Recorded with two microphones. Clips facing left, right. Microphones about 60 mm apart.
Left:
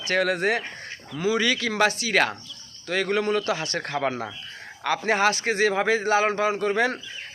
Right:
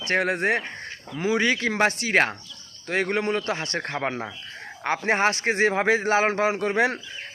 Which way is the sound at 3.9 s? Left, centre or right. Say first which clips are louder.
Left 3 dB; right.